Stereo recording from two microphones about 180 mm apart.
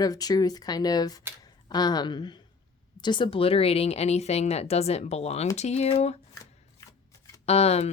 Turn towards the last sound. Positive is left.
turn(degrees=35)  # may be behind; listen again after turning